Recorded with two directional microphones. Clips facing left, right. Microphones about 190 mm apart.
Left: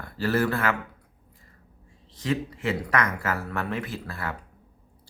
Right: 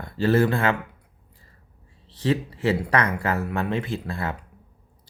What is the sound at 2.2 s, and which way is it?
Speech, 35° right (ahead or behind).